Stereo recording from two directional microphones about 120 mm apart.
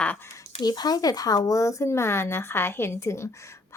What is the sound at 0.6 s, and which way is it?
Speech, 35° left (ahead or behind).